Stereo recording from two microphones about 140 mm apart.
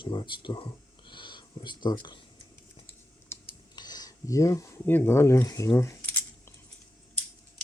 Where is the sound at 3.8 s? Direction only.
30° left (ahead or behind).